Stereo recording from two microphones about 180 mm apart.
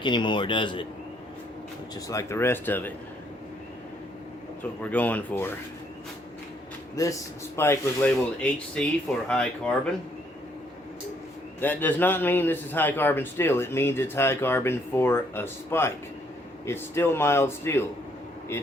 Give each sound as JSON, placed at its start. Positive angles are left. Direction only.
{"t": 0.0, "sound": "a man's voice", "side_deg": 25}
{"t": 2.0, "sound": "a man's voice", "side_deg": 15}
{"t": 4.8, "sound": "a man's voice", "side_deg": 10}
{"t": 6.9, "sound": "a man's voice", "side_deg": 20}
{"t": 11.6, "sound": "a man's voice", "side_deg": 10}